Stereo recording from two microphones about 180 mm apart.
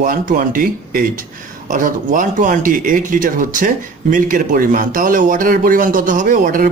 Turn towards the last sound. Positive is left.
turn(degrees=-50)  # may be behind; listen again after turning